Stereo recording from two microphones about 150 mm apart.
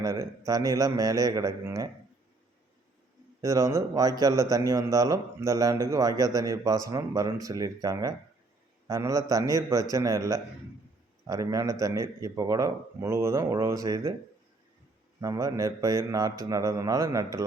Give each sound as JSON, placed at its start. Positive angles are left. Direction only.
{"t": 0.0, "sound": "a man's voice", "side_deg": -25}
{"t": 3.4, "sound": "a man's voice", "side_deg": -20}
{"t": 15.2, "sound": "a man's voice", "side_deg": -20}